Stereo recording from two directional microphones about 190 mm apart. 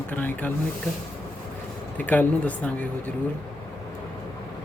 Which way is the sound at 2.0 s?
10° left (ahead or behind).